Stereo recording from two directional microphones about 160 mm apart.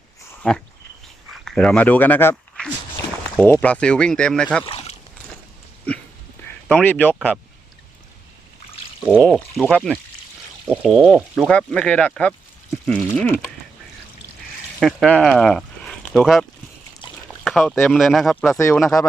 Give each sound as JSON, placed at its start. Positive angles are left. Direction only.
{"t": 0.4, "sound": "speech", "side_deg": 5}
{"t": 4.6, "sound": "a sound", "side_deg": 40}
{"t": 6.7, "sound": "speech", "side_deg": 10}
{"t": 9.3, "sound": "speech", "side_deg": 0}
{"t": 14.8, "sound": "speech", "side_deg": 5}
{"t": 18.6, "sound": "speech", "side_deg": 15}